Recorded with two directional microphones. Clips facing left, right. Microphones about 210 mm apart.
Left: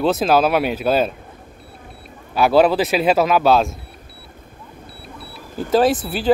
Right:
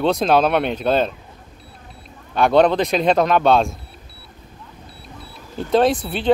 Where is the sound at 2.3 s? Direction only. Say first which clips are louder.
Even; 5° left (ahead or behind).